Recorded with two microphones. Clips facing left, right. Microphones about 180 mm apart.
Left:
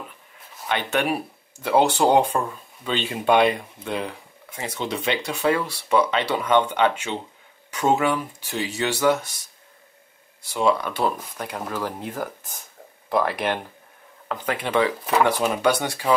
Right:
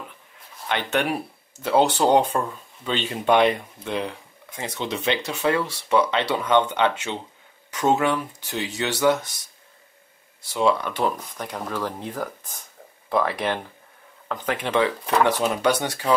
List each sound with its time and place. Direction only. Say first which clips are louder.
0.7 s speech: left 1 dB; 10° left (ahead or behind)
10.5 s speech: even; 10° left (ahead or behind)